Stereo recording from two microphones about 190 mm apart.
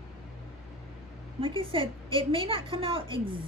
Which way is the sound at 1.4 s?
25° right (ahead or behind).